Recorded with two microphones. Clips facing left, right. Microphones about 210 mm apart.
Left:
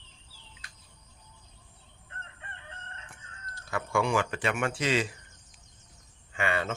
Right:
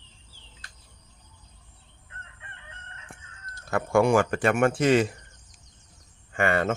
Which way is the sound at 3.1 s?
45° right (ahead or behind).